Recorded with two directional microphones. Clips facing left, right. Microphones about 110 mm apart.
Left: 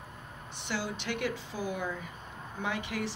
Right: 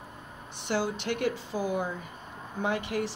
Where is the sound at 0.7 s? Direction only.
45° right (ahead or behind).